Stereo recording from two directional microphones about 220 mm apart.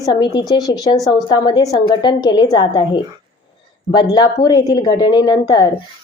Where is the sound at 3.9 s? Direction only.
20° left (ahead or behind).